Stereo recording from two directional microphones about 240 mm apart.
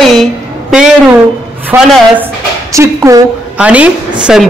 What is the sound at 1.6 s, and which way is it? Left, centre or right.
A woman's voice, centre.